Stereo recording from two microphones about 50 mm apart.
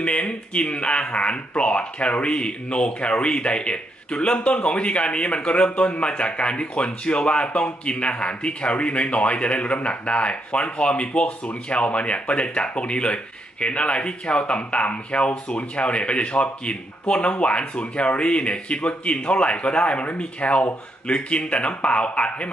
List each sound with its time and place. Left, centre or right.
0.0 s speech: left